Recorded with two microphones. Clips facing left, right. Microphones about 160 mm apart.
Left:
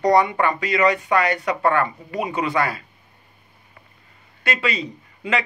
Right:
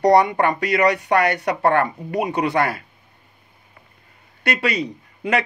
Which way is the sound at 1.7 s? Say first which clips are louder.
Right 3 dB; 55° right (ahead or behind).